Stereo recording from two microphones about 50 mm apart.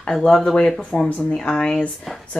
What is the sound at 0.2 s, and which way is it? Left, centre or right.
A woman's voice, centre.